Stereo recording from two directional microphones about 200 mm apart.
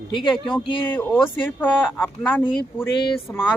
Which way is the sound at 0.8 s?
10° left (ahead or behind).